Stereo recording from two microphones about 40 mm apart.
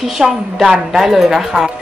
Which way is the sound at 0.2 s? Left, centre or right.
Centre.